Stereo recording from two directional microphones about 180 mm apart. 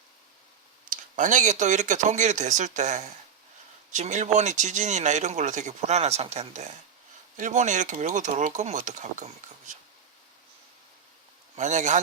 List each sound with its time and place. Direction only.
0.9 s speech: 45° right (ahead or behind)
11.5 s speech: 40° right (ahead or behind)